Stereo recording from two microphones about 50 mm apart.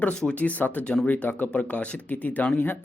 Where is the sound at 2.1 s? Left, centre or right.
Left.